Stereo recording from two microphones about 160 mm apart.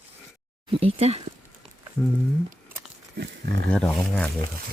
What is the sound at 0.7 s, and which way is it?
Speech, 40° right (ahead or behind).